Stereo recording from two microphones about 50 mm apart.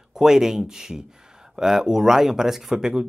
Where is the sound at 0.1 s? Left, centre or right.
Centre.